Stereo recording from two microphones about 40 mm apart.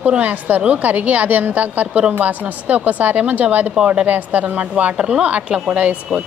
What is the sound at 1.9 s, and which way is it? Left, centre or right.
Speech, right.